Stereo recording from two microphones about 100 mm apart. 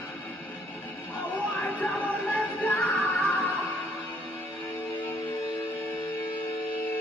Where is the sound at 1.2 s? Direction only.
20° left (ahead or behind).